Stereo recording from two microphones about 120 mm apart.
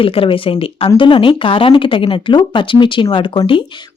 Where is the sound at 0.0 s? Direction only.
50° left (ahead or behind).